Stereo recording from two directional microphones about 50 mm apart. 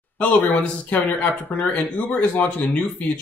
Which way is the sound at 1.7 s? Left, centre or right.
Left.